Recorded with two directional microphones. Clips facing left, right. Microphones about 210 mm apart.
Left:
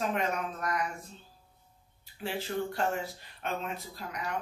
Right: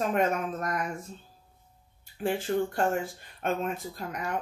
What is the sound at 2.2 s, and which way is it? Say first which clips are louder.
Speech: right 6 dB; 50° right (ahead or behind).